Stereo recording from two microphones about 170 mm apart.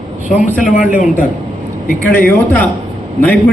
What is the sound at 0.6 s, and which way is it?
Speech, 50° left (ahead or behind).